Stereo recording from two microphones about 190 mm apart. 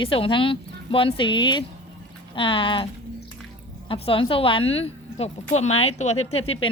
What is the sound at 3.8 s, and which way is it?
A woman's voice, 30° left (ahead or behind).